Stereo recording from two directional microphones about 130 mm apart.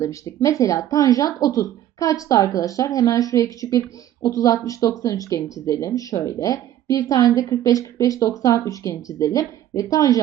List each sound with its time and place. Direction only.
0.0 s a woman's voice: 25° left (ahead or behind)